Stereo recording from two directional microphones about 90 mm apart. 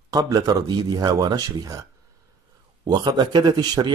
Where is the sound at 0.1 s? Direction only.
45° right (ahead or behind).